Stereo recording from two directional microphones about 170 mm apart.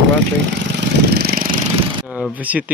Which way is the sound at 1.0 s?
70° right (ahead or behind).